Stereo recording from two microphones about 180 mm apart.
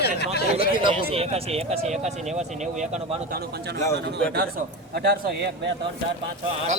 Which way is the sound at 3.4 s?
65° right (ahead or behind).